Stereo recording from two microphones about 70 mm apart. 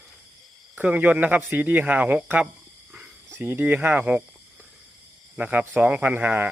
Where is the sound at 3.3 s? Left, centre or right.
Right.